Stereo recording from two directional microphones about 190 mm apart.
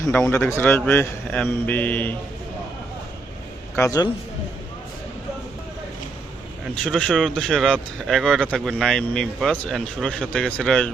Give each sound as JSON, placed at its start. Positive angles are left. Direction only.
{"t": 0.1, "sound": "a man's voice", "side_deg": 10}
{"t": 3.8, "sound": "a man's voice", "side_deg": 15}
{"t": 6.8, "sound": "speech", "side_deg": 0}